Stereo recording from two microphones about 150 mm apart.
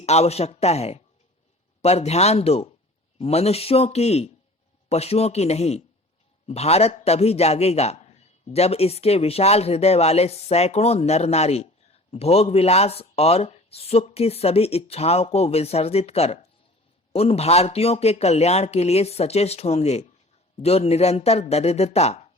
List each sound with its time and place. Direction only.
0.0 s a man's voice: 45° left (ahead or behind)